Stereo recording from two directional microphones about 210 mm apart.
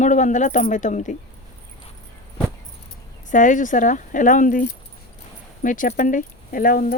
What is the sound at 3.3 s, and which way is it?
A woman's voice, 35° left (ahead or behind).